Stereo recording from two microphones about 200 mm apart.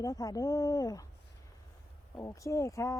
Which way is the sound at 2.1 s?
15° left (ahead or behind).